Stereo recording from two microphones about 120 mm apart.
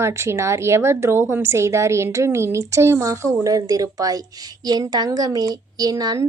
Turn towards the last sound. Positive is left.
turn(degrees=-30)  # may be behind; listen again after turning